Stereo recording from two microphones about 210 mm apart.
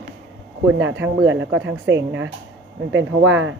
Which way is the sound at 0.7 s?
60° right (ahead or behind).